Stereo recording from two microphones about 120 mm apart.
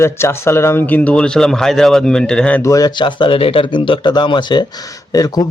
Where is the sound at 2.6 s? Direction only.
30° left (ahead or behind).